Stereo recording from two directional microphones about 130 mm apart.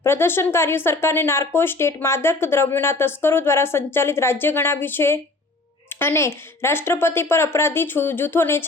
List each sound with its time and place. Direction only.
0.0 s speech: 20° left (ahead or behind)